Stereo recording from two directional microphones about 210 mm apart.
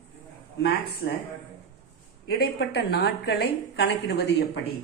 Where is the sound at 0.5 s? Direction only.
50° left (ahead or behind).